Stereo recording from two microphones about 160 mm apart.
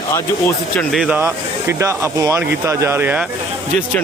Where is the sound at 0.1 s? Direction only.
15° left (ahead or behind).